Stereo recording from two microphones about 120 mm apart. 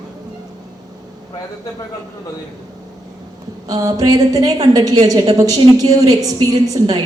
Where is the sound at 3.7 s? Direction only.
30° right (ahead or behind).